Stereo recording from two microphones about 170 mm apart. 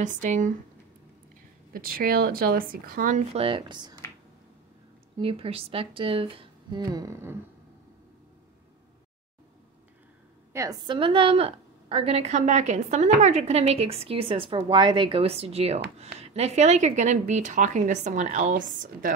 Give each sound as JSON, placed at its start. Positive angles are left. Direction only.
{"t": 0.2, "sound": "a woman's voice", "side_deg": -50}
{"t": 1.7, "sound": "speech", "side_deg": -60}
{"t": 3.3, "sound": "speech", "side_deg": -30}
{"t": 5.1, "sound": "a woman's voice", "side_deg": -30}
{"t": 10.5, "sound": "a woman's voice", "side_deg": -20}